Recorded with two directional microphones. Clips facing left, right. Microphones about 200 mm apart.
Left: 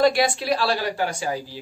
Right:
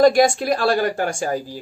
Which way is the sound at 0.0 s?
45° right (ahead or behind).